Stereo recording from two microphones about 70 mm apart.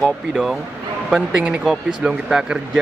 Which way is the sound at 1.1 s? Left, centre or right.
Centre.